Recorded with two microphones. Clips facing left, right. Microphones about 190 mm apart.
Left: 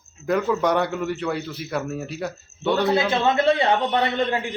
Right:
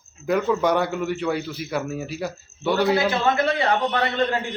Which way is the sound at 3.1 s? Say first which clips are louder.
Left 1 dB; 25° left (ahead or behind).